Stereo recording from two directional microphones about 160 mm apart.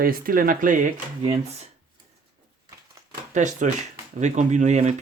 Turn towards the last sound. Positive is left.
turn(degrees=-45)  # may be behind; listen again after turning